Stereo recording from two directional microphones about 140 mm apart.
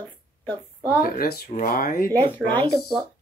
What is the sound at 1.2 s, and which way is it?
Speech, 85° left.